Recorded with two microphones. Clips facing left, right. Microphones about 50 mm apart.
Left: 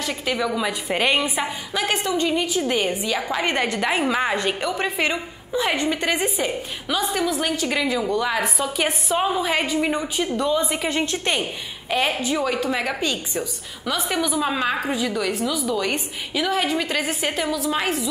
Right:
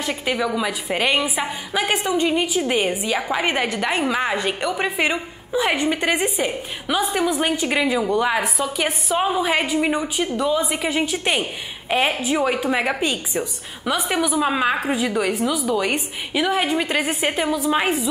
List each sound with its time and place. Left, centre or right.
0.0 s a woman's voice: centre
8.5 s a woman's voice: centre